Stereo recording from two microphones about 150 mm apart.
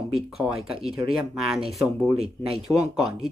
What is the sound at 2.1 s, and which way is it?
Speech, 45° right (ahead or behind).